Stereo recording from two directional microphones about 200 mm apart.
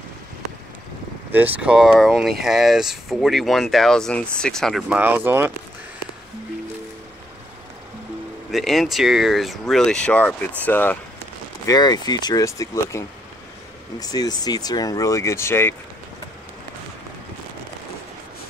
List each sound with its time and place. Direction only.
1.3 s speech: 5° right (ahead or behind)
8.5 s speech: centre (ahead or behind)